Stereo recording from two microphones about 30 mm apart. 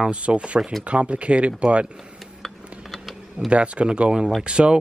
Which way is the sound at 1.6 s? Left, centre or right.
Right.